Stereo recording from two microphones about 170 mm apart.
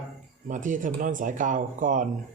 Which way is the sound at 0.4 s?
50° right (ahead or behind).